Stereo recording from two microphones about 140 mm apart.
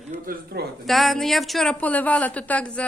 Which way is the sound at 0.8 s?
Centre (ahead or behind).